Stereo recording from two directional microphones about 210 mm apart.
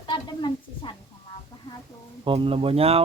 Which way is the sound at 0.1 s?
20° left (ahead or behind).